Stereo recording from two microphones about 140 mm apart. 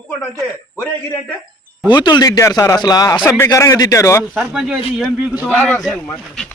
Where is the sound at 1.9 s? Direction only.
30° left (ahead or behind).